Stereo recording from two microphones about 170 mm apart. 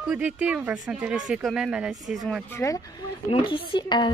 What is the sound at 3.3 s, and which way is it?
Speech, 30° left (ahead or behind).